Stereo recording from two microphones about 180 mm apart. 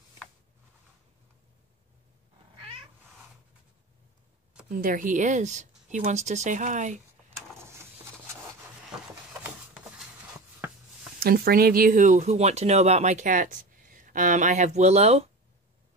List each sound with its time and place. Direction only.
4.6 s speech: 50° right (ahead or behind)
11.1 s speech: 55° right (ahead or behind); by 15.2 s 35° right (ahead or behind)